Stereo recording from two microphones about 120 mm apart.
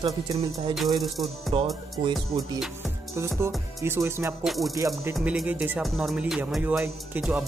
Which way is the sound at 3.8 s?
20° right (ahead or behind).